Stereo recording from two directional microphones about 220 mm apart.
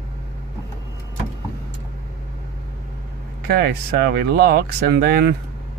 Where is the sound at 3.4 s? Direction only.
45° right (ahead or behind).